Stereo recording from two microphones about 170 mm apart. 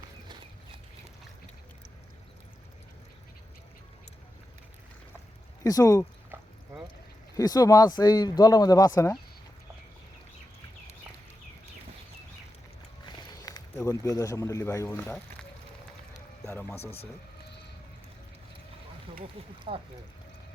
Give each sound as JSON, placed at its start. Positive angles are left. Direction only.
{"t": 5.6, "sound": "speech", "side_deg": 20}
{"t": 6.3, "sound": "a sound", "side_deg": -15}
{"t": 7.3, "sound": "speech", "side_deg": 20}
{"t": 13.1, "sound": "a sound", "side_deg": 25}
{"t": 15.0, "sound": "speech", "side_deg": 5}
{"t": 16.5, "sound": "speech", "side_deg": 10}
{"t": 19.7, "sound": "speech", "side_deg": -35}